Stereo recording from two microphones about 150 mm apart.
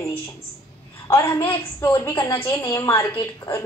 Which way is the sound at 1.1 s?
20° left (ahead or behind).